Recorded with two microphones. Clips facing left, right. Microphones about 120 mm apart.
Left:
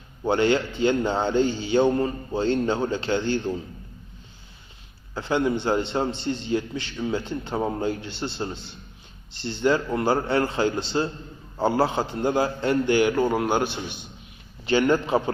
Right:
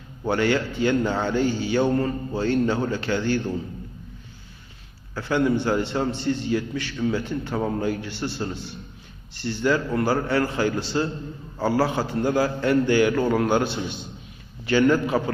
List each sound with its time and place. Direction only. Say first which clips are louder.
0.3 s a man's voice: left 1 dB; 25° left (ahead or behind)
5.1 s a man's voice: right 2 dB; 20° left (ahead or behind)